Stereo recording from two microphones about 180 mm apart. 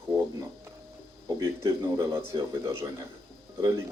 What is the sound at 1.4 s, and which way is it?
A man's voice, 20° right (ahead or behind).